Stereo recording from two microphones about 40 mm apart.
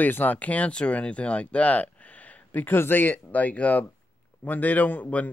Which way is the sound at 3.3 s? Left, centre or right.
Left.